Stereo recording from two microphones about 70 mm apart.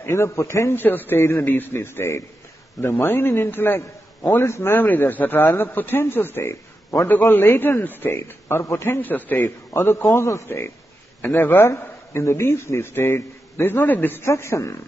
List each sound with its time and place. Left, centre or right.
0.0 s a man's voice: left
0.7 s a man's voice: left
8.2 s a man's voice: left
11.2 s a man's voice: left
14.3 s a man's voice: left